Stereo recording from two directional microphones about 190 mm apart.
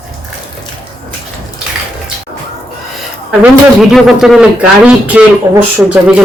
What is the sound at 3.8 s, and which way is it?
Speech, centre (ahead or behind).